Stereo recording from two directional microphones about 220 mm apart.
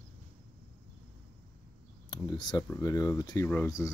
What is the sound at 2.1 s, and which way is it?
Speech, 20° left (ahead or behind).